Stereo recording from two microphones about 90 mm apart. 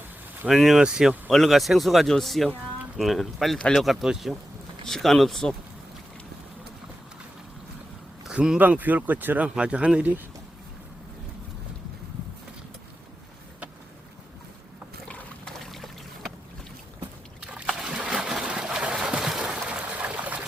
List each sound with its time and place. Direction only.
0.4 s speech: centre (ahead or behind)
8.3 s speech: 10° right (ahead or behind)
15.0 s trickle: 10° left (ahead or behind)
17.7 s a sound: 5° right (ahead or behind)